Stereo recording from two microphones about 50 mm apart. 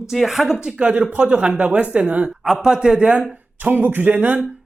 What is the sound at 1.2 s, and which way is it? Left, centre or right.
Speech, right.